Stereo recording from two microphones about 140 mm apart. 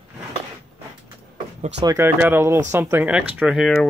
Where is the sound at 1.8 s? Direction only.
20° right (ahead or behind).